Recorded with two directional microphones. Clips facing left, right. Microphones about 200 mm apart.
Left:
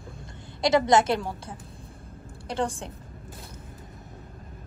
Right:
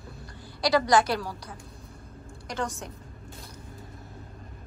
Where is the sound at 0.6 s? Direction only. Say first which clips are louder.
Left 2 dB; 25° left (ahead or behind).